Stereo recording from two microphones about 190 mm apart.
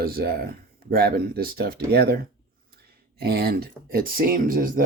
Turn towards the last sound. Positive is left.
turn(degrees=-45)  # may be behind; listen again after turning